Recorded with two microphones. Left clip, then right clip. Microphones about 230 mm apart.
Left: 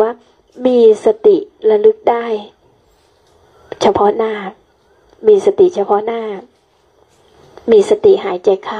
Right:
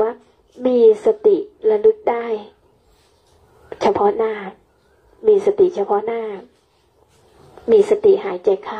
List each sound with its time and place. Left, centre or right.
0.0 s a woman's voice: left
3.6 s a woman's voice: left
7.6 s a woman's voice: left